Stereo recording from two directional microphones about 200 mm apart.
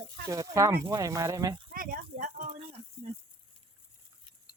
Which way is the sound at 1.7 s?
45° right (ahead or behind).